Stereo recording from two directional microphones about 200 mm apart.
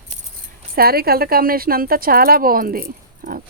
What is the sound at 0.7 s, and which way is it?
Speech, 50° right (ahead or behind).